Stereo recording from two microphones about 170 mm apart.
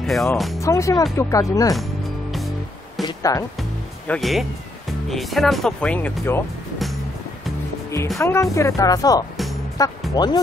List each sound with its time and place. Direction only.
0.0 s speech: centre (ahead or behind)
0.6 s speech: 20° left (ahead or behind)
3.0 s music: 20° left (ahead or behind)
4.1 s speech: centre (ahead or behind)
8.2 s speech: 15° left (ahead or behind)
9.8 s music: 20° left (ahead or behind)
10.1 s speech: 25° left (ahead or behind)